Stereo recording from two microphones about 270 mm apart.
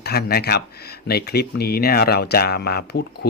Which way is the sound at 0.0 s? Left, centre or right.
Left.